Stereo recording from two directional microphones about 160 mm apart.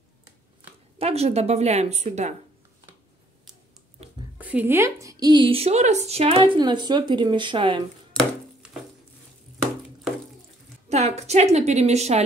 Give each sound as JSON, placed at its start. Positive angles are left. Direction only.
{"t": 0.9, "sound": "a woman's voice", "side_deg": -40}
{"t": 4.0, "sound": "a sound", "side_deg": -40}
{"t": 4.4, "sound": "a woman's voice", "side_deg": -10}
{"t": 10.9, "sound": "a woman's voice", "side_deg": -45}